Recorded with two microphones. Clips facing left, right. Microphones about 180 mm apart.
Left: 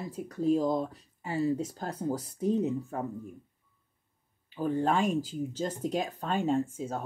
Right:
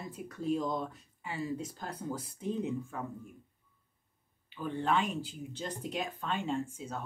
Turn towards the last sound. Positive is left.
turn(degrees=45)  # may be behind; listen again after turning